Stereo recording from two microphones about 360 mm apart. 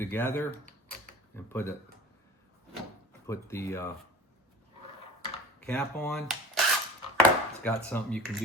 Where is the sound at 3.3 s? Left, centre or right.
Centre.